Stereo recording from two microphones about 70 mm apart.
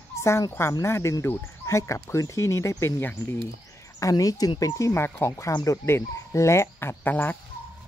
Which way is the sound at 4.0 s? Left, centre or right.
Left.